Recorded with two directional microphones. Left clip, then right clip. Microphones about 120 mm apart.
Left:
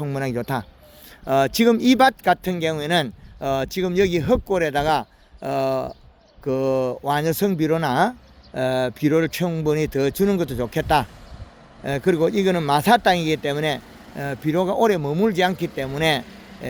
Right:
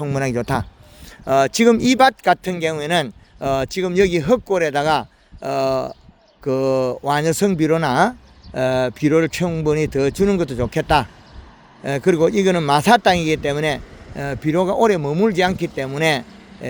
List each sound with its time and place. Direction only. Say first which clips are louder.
0.0 s speech: right 4 dB; 50° right (ahead or behind)
1.2 s speech: right 3 dB; 40° right (ahead or behind)